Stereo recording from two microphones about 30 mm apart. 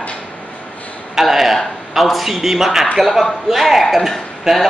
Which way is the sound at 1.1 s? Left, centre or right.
Centre.